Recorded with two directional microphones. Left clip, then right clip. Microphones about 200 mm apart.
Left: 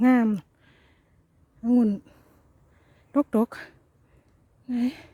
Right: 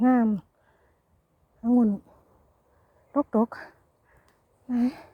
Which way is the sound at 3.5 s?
45° left (ahead or behind).